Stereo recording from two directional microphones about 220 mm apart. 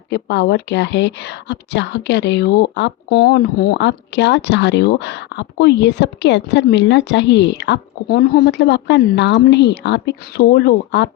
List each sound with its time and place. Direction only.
0.1 s speech: 50° left (ahead or behind)